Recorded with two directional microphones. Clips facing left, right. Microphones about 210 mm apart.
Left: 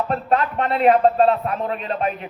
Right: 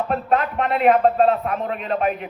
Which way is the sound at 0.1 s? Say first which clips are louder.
Even; 35° left (ahead or behind).